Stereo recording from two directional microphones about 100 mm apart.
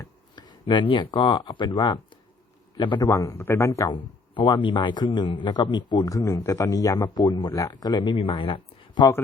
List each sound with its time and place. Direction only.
0.3 s a man's voice: 50° left (ahead or behind)
3.1 s speech: 30° left (ahead or behind)
4.4 s a man's voice: 55° left (ahead or behind)
6.1 s speech: 35° left (ahead or behind)
7.2 s a man's voice: 50° left (ahead or behind)
8.2 s speech: 60° left (ahead or behind)